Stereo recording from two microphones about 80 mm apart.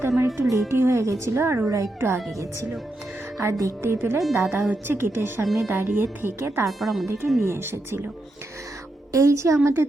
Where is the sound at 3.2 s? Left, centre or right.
Right.